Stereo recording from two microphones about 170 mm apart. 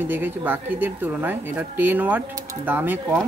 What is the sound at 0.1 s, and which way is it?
Speech, 10° right (ahead or behind).